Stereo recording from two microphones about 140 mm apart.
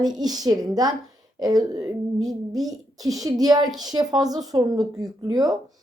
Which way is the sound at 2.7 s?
25° right (ahead or behind).